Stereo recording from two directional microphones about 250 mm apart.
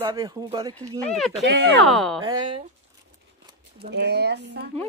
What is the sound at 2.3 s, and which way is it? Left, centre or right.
Speech, centre.